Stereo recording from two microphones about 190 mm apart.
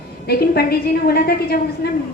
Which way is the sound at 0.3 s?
55° left (ahead or behind).